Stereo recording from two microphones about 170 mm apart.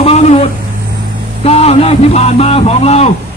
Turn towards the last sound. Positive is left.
turn(degrees=35)  # may be behind; listen again after turning